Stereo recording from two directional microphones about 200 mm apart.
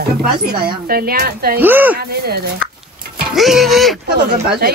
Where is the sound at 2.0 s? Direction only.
50° right (ahead or behind).